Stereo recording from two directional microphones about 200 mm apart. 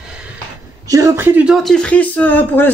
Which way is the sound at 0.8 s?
15° right (ahead or behind).